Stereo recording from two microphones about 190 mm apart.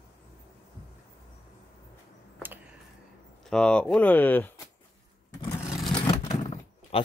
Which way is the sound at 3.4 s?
5° left (ahead or behind).